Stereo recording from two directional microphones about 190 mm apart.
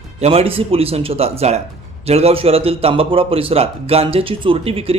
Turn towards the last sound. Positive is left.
turn(degrees=-30)  # may be behind; listen again after turning